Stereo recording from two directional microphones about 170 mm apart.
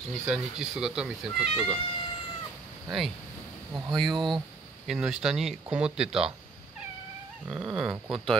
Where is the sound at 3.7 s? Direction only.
25° right (ahead or behind).